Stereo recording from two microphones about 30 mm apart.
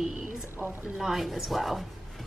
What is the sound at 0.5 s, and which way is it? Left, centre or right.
Speech, right.